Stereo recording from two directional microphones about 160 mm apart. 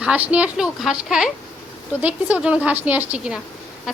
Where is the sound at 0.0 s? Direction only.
10° right (ahead or behind).